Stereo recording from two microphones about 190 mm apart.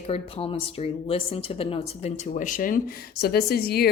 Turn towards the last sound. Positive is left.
turn(degrees=55)  # may be behind; listen again after turning